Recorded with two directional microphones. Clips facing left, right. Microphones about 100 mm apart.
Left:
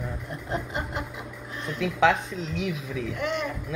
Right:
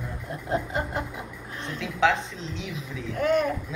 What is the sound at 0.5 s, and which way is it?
Chuckle, 35° right (ahead or behind).